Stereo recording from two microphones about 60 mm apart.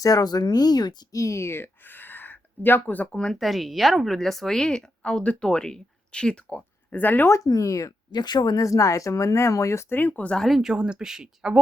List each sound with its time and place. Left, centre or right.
0.0 s speech: left
3.1 s speech: centre
3.3 s speech: centre
5.2 s speech: left
5.5 s speech: centre
6.9 s speech: left
7.4 s speech: left
9.9 s speech: left
10.3 s speech: centre
10.6 s speech: centre